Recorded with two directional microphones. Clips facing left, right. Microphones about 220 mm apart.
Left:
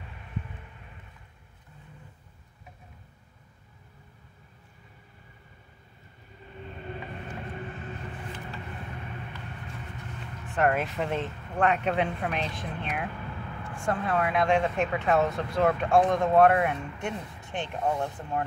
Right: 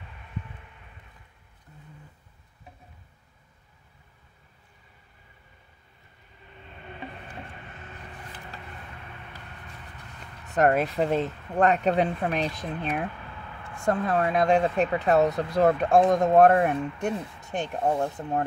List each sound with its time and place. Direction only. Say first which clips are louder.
10.4 s speech: right 4 dB; 40° right (ahead or behind)